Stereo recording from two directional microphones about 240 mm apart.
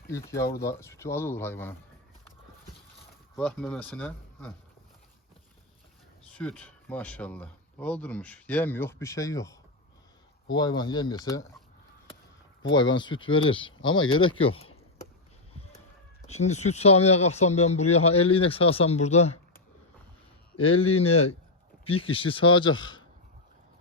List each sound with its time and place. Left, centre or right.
0.1 s speech: centre
3.3 s speech: centre
6.3 s speech: centre
12.7 s speech: centre
16.3 s speech: left